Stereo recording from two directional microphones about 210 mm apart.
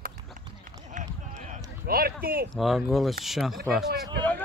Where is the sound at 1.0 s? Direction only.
35° right (ahead or behind).